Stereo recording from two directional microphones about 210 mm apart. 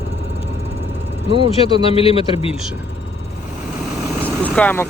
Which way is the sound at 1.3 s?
25° right (ahead or behind).